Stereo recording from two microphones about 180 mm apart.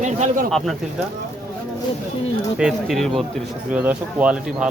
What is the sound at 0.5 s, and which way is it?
Speech, centre (ahead or behind).